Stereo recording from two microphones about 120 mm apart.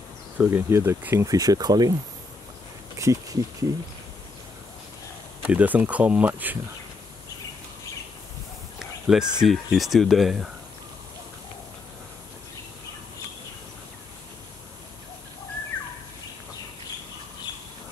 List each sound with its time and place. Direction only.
0.4 s speech: 20° right (ahead or behind)
3.0 s speech: 25° right (ahead or behind)
5.5 s speech: 10° right (ahead or behind)
8.7 s a sound: 5° right (ahead or behind)
9.4 s speech: 5° right (ahead or behind)